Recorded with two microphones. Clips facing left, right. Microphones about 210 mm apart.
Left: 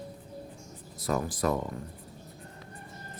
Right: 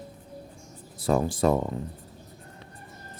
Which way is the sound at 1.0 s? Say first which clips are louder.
Right 6 dB; 30° right (ahead or behind).